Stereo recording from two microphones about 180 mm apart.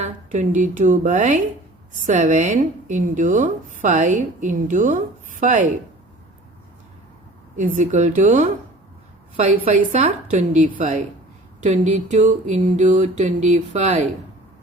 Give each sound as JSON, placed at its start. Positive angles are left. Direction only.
{"t": 0.0, "sound": "a woman's voice", "side_deg": -45}
{"t": 7.5, "sound": "a woman's voice", "side_deg": -45}
{"t": 9.6, "sound": "a sound", "side_deg": -40}